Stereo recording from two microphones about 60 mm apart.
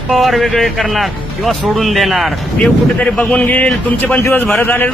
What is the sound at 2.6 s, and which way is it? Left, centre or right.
Speech, centre.